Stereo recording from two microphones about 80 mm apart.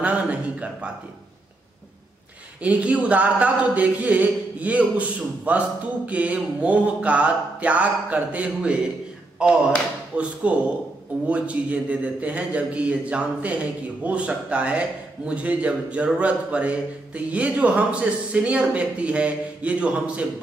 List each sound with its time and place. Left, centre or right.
0.0 s a man's voice: centre
2.6 s a man's voice: centre
10.1 s a man's voice: centre